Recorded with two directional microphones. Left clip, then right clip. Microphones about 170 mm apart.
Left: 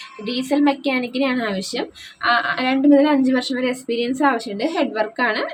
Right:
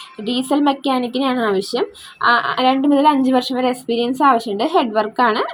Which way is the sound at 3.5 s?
15° right (ahead or behind).